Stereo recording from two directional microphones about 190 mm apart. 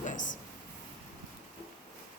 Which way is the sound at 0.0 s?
40° left (ahead or behind).